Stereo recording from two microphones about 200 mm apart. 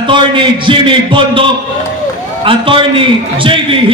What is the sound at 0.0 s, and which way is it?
A man's voice, 25° right (ahead or behind).